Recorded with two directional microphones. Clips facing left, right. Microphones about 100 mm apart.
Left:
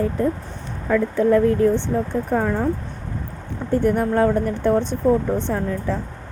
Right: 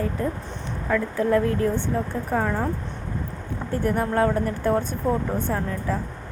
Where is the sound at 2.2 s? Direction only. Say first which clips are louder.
Left 2 dB; centre (ahead or behind).